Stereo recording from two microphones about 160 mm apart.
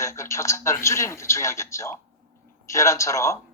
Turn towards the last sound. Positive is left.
turn(degrees=20)  # may be behind; listen again after turning